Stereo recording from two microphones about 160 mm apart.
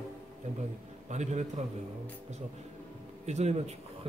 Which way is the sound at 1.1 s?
45° right (ahead or behind).